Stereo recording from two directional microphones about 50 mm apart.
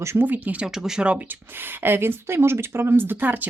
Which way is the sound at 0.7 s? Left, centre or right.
Centre.